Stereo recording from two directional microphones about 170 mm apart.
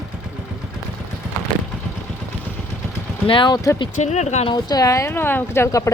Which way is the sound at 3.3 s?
25° left (ahead or behind).